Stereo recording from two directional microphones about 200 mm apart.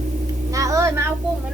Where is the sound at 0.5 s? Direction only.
15° right (ahead or behind).